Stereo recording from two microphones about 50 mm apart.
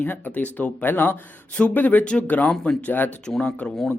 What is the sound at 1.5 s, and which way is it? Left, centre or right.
Speech, left.